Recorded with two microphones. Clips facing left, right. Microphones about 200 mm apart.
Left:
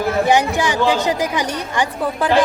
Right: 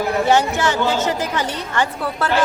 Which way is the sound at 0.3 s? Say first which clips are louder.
Right 1 dB; 15° left (ahead or behind).